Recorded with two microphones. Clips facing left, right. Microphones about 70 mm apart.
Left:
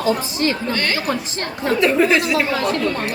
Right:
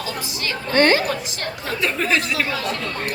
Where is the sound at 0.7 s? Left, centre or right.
Right.